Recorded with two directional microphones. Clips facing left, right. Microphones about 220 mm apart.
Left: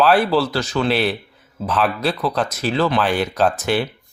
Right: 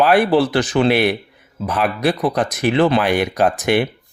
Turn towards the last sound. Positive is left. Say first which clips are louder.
# right 2 dB
turn(degrees=-15)  # may be behind; listen again after turning